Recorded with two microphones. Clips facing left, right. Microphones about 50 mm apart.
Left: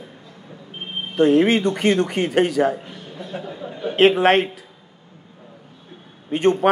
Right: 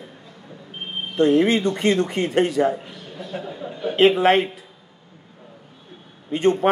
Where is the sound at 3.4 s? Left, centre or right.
Centre.